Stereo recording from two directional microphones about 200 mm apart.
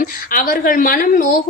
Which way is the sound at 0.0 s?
45° left (ahead or behind).